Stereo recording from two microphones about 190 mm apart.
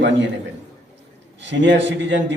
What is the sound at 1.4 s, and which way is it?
Speech, 70° right (ahead or behind).